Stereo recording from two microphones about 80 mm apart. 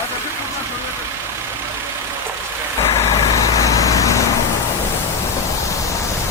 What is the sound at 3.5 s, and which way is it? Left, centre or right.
Vehicle, left.